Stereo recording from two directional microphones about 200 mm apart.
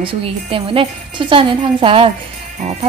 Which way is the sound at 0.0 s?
25° right (ahead or behind).